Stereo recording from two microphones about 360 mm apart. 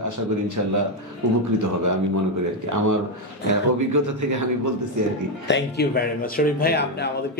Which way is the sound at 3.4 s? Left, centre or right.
Right.